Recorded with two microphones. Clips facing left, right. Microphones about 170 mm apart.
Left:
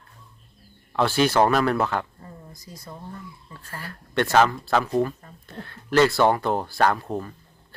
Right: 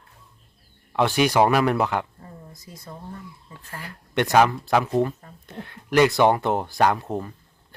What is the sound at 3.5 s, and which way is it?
Speech, 15° right (ahead or behind).